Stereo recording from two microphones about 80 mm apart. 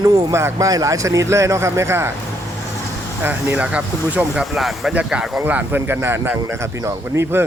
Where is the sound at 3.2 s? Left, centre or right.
Right.